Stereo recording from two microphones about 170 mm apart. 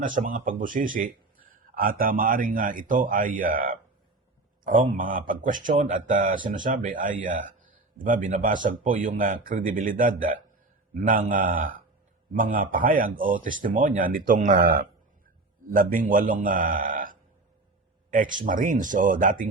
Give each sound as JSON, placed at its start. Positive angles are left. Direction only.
{"t": 0.0, "sound": "speech", "side_deg": -50}